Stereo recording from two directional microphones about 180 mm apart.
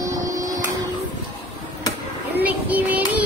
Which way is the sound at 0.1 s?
20° right (ahead or behind).